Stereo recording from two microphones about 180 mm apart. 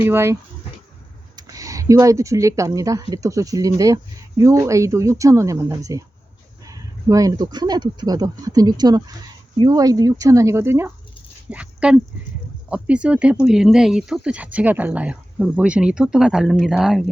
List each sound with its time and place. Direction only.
0.0 s speech: 15° right (ahead or behind)
1.4 s speech: 20° right (ahead or behind); by 17.1 s 5° right (ahead or behind)